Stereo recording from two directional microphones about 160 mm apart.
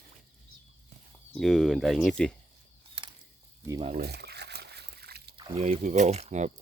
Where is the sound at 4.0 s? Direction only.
85° right.